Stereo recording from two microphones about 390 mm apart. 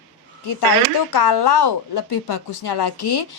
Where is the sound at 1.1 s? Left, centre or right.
Left.